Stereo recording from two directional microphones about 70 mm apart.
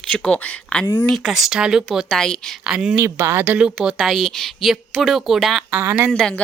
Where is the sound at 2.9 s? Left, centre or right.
Right.